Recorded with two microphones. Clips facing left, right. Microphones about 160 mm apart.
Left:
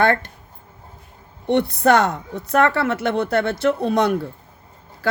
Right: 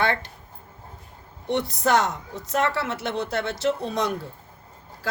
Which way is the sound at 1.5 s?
55° left (ahead or behind).